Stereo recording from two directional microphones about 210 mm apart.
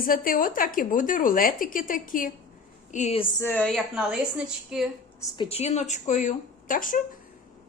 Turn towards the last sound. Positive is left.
turn(degrees=40)  # may be behind; listen again after turning